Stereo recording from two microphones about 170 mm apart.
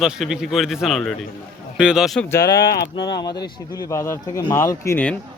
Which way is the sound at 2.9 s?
25° left (ahead or behind).